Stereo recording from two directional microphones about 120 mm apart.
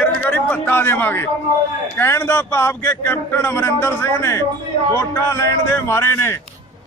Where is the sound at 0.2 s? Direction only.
15° left (ahead or behind).